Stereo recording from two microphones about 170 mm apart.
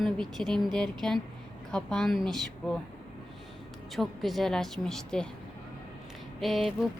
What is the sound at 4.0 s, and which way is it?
A woman's voice, centre (ahead or behind).